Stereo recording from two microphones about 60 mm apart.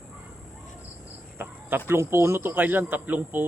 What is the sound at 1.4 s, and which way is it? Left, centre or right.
Speech, right.